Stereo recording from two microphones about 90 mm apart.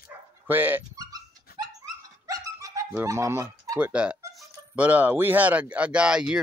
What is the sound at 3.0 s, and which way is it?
Fowl, 35° right (ahead or behind).